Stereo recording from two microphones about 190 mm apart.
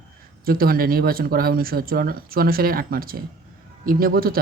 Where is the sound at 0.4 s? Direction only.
50° right (ahead or behind).